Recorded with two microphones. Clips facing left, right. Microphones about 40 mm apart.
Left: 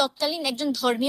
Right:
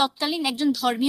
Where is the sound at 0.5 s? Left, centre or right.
Centre.